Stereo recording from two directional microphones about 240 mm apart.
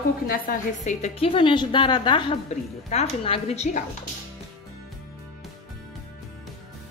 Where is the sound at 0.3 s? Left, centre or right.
Left.